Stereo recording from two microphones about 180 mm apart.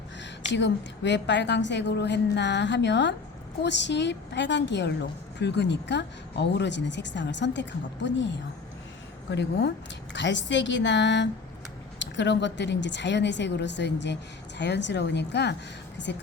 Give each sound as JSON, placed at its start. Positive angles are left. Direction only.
{"t": 0.2, "sound": "a woman's voice", "side_deg": 75}